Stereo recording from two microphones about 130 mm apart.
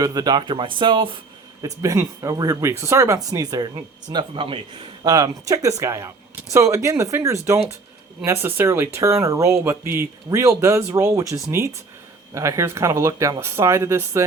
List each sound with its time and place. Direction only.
0.0 s speech: 30° right (ahead or behind)
1.6 s speech: 25° right (ahead or behind); by 4.8 s 40° right (ahead or behind)
5.0 s speech: 25° right (ahead or behind)